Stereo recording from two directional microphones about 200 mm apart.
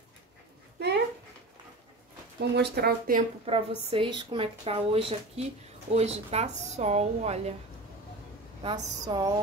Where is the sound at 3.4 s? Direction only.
30° right (ahead or behind).